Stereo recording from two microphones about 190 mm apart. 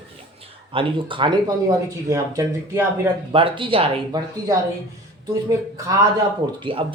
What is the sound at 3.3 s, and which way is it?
Speech, 25° right (ahead or behind).